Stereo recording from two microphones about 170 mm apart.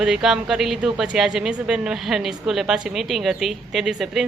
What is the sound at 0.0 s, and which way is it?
A woman's voice, 5° right (ahead or behind).